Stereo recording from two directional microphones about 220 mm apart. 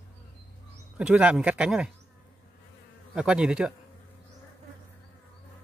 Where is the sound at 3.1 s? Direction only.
5° right (ahead or behind).